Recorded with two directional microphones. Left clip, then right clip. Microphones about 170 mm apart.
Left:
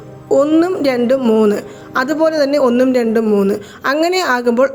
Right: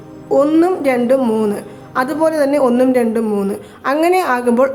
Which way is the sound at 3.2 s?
10° left (ahead or behind).